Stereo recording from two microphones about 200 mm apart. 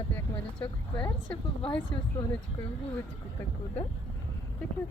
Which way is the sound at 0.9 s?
5° left (ahead or behind).